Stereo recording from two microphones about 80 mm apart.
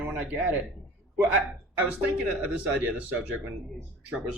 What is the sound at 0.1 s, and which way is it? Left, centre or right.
Speech, right.